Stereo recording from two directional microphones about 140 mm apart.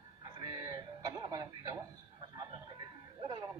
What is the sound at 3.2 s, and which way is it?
Speech, 30° right (ahead or behind).